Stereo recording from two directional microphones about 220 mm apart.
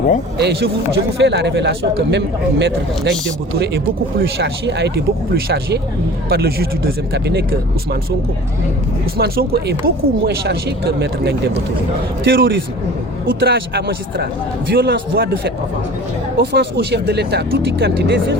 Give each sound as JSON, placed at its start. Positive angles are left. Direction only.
{"t": 0.3, "sound": "a man's voice", "side_deg": -45}
{"t": 9.1, "sound": "a man's voice", "side_deg": -45}